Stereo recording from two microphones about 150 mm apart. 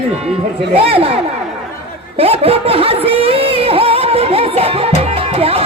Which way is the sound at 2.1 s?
40° right (ahead or behind).